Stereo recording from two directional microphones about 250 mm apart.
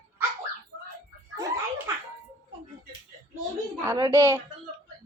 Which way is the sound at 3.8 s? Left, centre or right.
Centre.